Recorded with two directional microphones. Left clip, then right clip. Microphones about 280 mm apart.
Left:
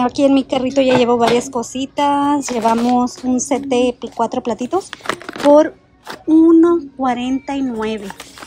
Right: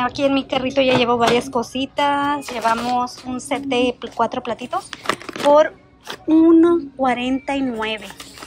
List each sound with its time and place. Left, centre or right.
0.0 s speech: centre
5.0 s a sound: centre
6.2 s speech: centre